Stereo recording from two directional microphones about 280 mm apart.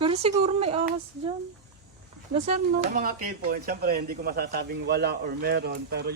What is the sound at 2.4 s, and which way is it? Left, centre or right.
Speech, right.